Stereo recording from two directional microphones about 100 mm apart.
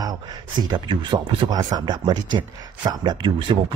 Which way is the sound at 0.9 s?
55° right (ahead or behind).